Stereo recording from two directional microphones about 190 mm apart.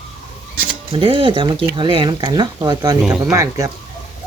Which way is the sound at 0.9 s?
30° right (ahead or behind).